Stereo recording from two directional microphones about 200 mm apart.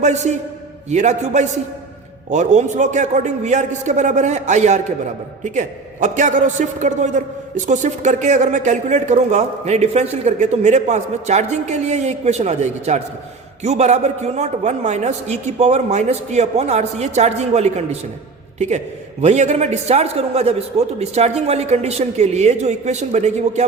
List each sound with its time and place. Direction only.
0.0 s a man's voice: 35° right (ahead or behind)
19.2 s a man's voice: 35° right (ahead or behind)